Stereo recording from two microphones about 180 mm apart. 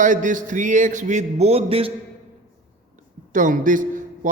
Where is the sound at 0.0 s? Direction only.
45° right (ahead or behind).